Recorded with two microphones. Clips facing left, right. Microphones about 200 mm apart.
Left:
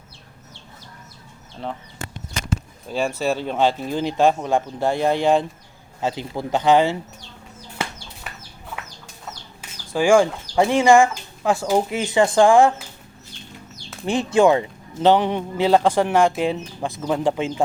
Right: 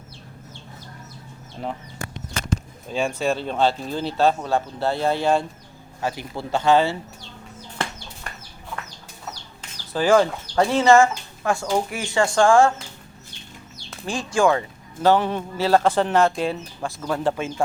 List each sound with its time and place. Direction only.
2.9 s a man's voice: 5° left (ahead or behind)
8.3 s chicken: 5° left (ahead or behind)
9.6 s chicken: 10° left (ahead or behind)
10.5 s speech: 15° left (ahead or behind)
14.0 s a man's voice: 20° left (ahead or behind)